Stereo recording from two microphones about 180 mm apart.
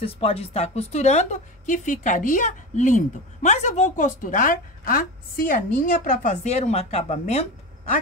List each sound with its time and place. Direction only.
0.0 s a woman's voice: 35° left (ahead or behind)